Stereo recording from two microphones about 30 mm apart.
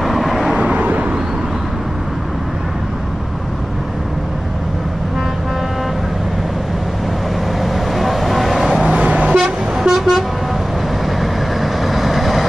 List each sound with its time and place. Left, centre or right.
0.0 s vehicle: centre
0.6 s vehicle: right
7.6 s vehicle: centre
8.8 s vehicle: right
9.8 s vehicle: centre
11.6 s vehicle: centre